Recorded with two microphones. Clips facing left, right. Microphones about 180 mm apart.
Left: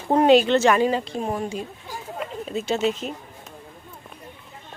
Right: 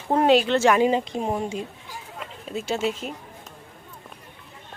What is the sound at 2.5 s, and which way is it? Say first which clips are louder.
Speech: left 2 dB; 5° right (ahead or behind).